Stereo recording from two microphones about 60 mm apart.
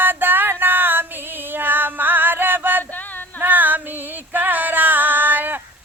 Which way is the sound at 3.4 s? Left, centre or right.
Right.